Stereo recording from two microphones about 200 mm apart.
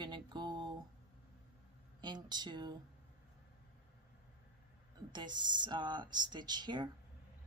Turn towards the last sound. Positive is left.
turn(degrees=-20)  # may be behind; listen again after turning